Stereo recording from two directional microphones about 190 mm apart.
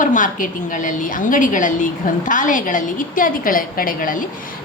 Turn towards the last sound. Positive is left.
turn(degrees=45)  # may be behind; listen again after turning